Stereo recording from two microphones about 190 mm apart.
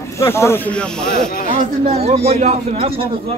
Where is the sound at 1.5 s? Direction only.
35° right (ahead or behind).